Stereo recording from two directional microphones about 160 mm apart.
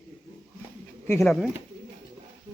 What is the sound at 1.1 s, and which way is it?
Speech, 15° left (ahead or behind).